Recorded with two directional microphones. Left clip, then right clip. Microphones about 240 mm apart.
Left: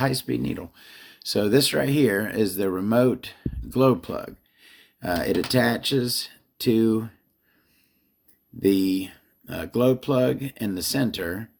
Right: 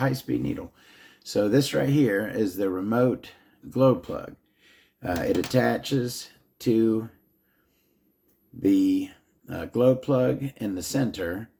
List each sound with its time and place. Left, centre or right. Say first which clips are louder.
0.0 s speech: left 2 dB; left
8.6 s speech: left 1 dB; left